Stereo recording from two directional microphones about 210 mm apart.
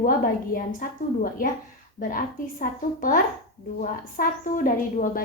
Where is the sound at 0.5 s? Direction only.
40° left (ahead or behind).